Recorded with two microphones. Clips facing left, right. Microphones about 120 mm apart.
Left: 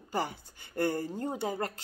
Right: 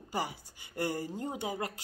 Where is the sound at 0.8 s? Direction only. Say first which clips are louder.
Left 3 dB; 10° right (ahead or behind).